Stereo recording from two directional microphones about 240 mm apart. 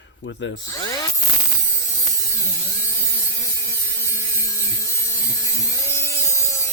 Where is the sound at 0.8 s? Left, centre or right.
Centre.